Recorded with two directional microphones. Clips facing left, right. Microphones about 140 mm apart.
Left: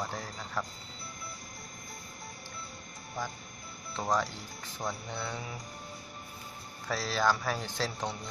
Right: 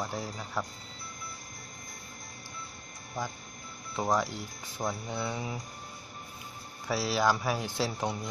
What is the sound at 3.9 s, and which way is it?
Speech, 15° right (ahead or behind).